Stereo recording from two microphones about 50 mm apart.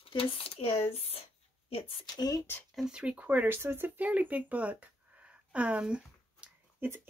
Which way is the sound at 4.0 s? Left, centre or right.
Right.